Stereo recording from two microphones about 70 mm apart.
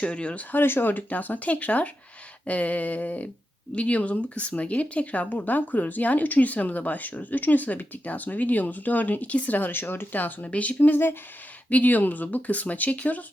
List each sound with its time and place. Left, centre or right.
0.0 s speech: centre
0.5 s speech: left